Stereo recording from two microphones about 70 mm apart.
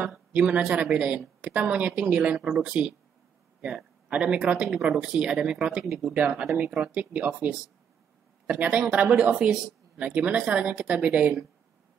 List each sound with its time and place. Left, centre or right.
0.3 s speech: centre
2.3 s a woman's voice: centre; by 7.5 s right
8.5 s a woman's voice: centre